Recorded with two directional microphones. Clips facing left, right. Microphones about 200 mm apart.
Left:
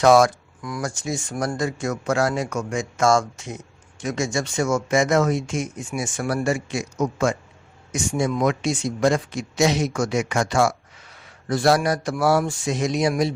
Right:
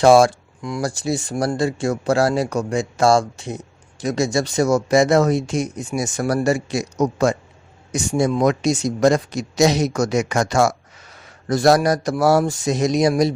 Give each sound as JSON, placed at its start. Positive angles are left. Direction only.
{"t": 0.0, "sound": "speech", "side_deg": -30}